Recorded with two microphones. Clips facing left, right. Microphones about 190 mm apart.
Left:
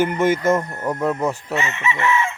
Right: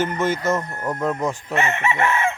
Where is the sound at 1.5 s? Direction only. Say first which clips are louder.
Right 2 dB; 55° right (ahead or behind).